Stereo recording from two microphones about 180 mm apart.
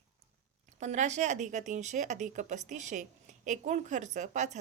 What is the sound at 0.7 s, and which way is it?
A woman's voice, 40° right (ahead or behind).